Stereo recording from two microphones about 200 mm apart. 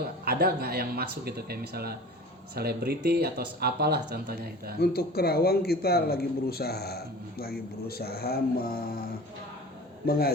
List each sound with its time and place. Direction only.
0.0 s speech: 50° right (ahead or behind)
4.8 s speech: 50° left (ahead or behind)
10.1 s speech: 50° left (ahead or behind)